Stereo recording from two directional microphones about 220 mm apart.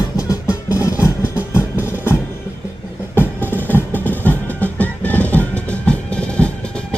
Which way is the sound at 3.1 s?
10° left (ahead or behind).